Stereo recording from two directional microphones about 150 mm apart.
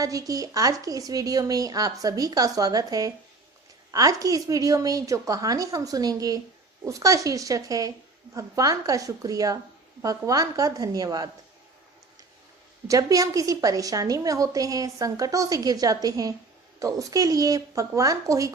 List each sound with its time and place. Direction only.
0.0 s a woman's voice: 25° right (ahead or behind)
12.8 s a woman's voice: 25° right (ahead or behind)